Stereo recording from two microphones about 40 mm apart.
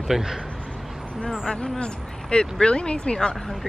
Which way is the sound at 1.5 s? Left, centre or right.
Left.